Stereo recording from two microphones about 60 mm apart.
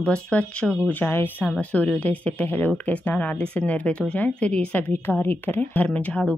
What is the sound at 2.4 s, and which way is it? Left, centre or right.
Speech, left.